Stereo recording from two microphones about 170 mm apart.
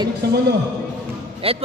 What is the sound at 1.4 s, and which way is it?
Speech, 35° right (ahead or behind).